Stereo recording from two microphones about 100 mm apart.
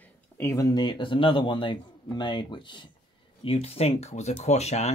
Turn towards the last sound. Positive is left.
turn(degrees=90)